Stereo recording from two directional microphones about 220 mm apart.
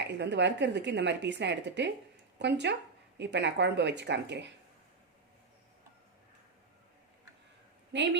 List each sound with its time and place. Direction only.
0.1 s speech: 50° right (ahead or behind)
7.9 s speech: 55° right (ahead or behind)